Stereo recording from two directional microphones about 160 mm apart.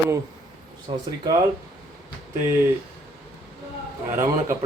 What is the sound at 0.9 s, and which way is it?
Speech, 35° right (ahead or behind).